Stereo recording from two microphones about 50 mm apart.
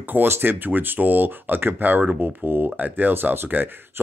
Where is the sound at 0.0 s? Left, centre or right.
Right.